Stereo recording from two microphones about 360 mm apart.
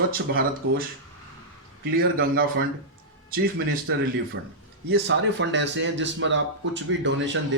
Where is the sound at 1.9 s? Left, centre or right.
Right.